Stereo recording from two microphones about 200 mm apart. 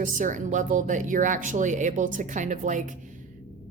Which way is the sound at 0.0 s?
40° right (ahead or behind).